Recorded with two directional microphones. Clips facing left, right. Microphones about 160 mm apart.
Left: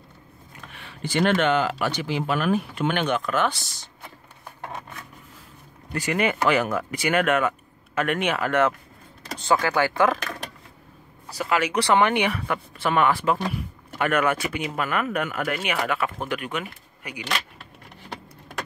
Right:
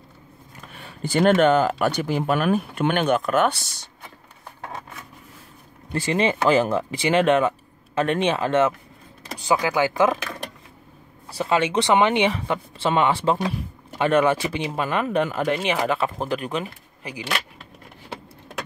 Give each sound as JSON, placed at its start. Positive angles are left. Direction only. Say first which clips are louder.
{"t": 0.7, "sound": "speech", "louder": "right 3 dB", "side_deg": -40}
{"t": 5.9, "sound": "speech", "louder": "right 2 dB", "side_deg": -25}
{"t": 9.4, "sound": "speech", "louder": "right 1 dB", "side_deg": -15}
{"t": 11.2, "sound": "speech", "louder": "right 3 dB", "side_deg": -25}